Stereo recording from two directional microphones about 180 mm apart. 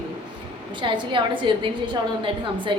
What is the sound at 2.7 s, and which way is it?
Speech, 30° right (ahead or behind).